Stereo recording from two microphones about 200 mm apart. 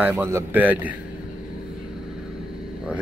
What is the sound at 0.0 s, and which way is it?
Speech, 10° right (ahead or behind).